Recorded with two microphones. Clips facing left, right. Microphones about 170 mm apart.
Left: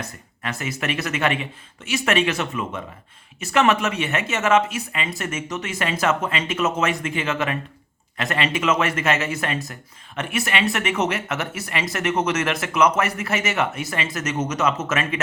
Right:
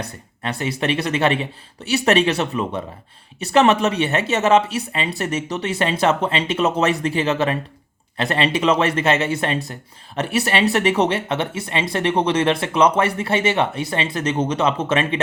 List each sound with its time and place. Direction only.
0.0 s speech: 30° right (ahead or behind)